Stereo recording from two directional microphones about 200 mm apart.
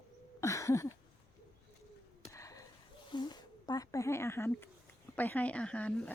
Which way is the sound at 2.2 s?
15° left (ahead or behind).